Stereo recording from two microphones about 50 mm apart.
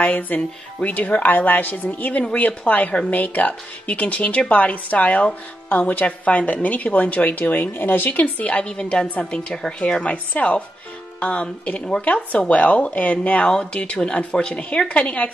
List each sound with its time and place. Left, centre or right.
0.0 s speech: left
1.2 s speech: left